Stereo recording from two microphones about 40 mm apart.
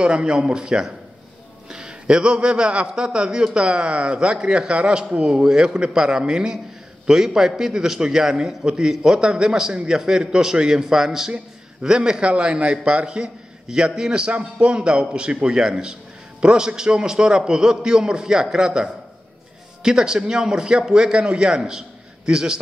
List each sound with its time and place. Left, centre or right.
0.0 s a man's voice: right